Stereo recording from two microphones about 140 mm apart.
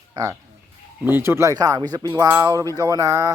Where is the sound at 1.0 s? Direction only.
15° right (ahead or behind).